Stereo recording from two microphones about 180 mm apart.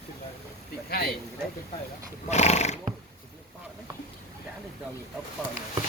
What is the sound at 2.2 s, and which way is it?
Speech, 40° left (ahead or behind).